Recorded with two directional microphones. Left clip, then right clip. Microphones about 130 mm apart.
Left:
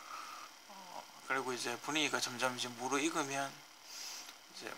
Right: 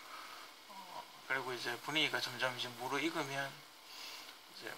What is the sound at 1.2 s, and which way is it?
Speech, 35° left (ahead or behind).